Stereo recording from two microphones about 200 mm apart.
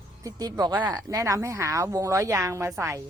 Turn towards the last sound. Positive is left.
turn(degrees=-15)  # may be behind; listen again after turning